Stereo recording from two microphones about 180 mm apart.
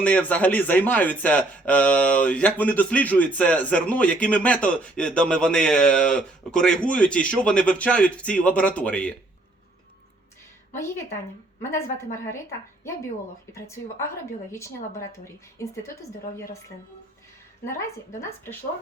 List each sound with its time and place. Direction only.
0.0 s speech: 10° left (ahead or behind)
10.8 s speech: 15° left (ahead or behind)
13.5 s speech: 15° left (ahead or behind)
17.7 s speech: 15° left (ahead or behind)